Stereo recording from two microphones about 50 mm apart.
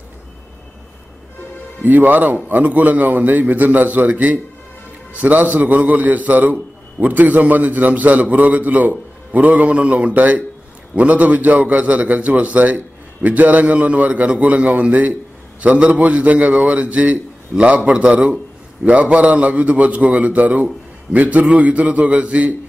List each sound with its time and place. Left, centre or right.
1.8 s a man's voice: right